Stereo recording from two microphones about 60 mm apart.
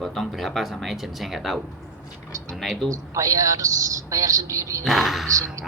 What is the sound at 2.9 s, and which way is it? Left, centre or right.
A woman's voice, right.